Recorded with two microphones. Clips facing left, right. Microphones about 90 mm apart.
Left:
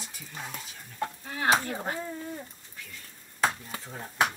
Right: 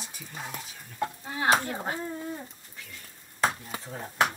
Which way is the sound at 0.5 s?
20° right (ahead or behind).